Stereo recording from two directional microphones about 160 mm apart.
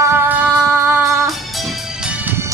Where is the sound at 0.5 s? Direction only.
15° right (ahead or behind).